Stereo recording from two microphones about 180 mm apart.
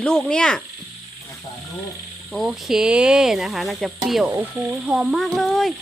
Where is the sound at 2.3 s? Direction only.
Centre (ahead or behind).